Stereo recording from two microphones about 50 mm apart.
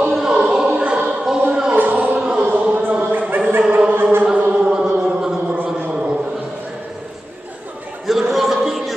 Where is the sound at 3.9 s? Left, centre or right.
Right.